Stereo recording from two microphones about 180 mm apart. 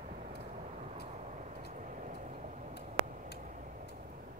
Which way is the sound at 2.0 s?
45° right (ahead or behind).